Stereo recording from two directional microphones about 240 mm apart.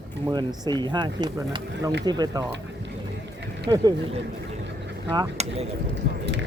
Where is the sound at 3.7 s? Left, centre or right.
Centre.